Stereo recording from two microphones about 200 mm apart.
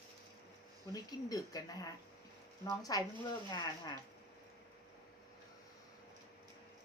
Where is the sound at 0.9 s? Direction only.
20° left (ahead or behind).